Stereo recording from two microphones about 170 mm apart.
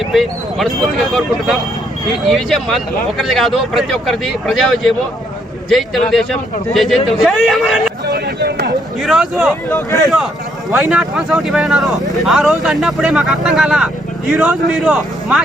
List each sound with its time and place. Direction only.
0.0 s speech: centre (ahead or behind)
8.0 s a sound: 70° right (ahead or behind)
9.0 s speech: centre (ahead or behind)
9.6 s speech: 15° left (ahead or behind)
10.8 s speech: 5° right (ahead or behind)